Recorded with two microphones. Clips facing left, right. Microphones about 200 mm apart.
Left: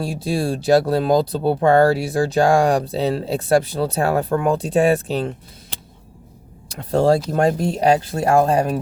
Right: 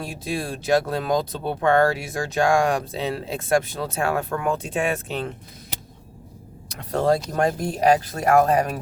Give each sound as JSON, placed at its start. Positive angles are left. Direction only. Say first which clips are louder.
{"t": 0.0, "sound": "speech", "louder": "left 6 dB", "side_deg": 35}
{"t": 6.7, "sound": "speech", "louder": "left 5 dB", "side_deg": 30}